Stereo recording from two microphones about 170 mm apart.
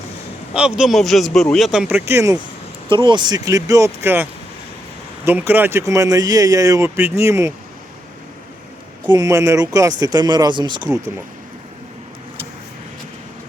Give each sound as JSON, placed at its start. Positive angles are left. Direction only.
{"t": 0.5, "sound": "speech", "side_deg": -5}
{"t": 2.9, "sound": "speech", "side_deg": -25}
{"t": 9.0, "sound": "speech", "side_deg": -20}